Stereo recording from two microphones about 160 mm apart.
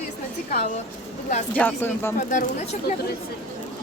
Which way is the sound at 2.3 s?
50° left (ahead or behind).